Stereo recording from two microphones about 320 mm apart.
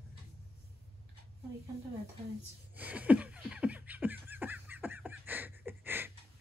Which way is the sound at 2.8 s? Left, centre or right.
Centre.